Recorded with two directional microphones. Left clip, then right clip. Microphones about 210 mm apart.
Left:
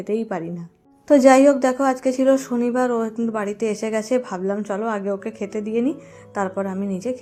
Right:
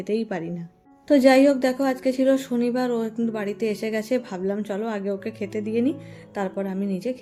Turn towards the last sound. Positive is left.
turn(degrees=0)  # may be behind; listen again after turning